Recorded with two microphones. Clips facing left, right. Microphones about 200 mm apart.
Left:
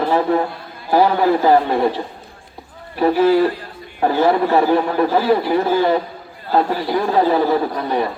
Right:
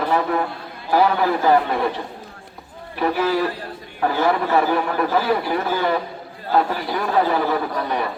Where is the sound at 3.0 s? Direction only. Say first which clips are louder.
Left 6 dB; 30° left (ahead or behind).